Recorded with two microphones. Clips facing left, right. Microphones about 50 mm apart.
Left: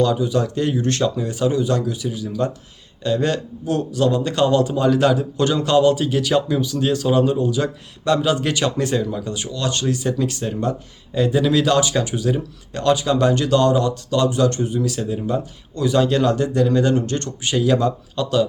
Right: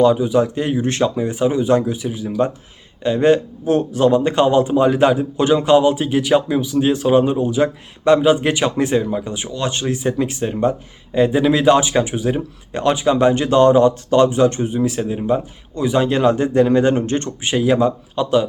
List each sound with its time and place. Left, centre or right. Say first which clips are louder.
0.0 s speech: right 5 dB; centre